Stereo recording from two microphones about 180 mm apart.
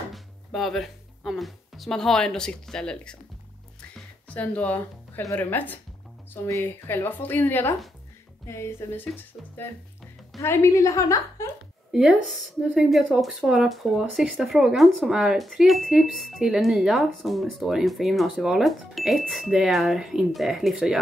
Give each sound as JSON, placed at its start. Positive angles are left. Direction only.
{"t": 0.1, "sound": "speech", "side_deg": 0}
{"t": 4.3, "sound": "speech", "side_deg": 10}
{"t": 11.9, "sound": "speech", "side_deg": 0}